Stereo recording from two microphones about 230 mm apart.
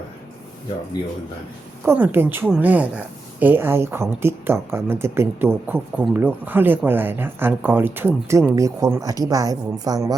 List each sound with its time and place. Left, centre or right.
1.8 s speech: centre